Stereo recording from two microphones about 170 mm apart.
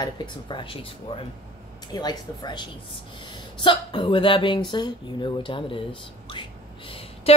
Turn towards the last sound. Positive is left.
turn(degrees=30)  # may be behind; listen again after turning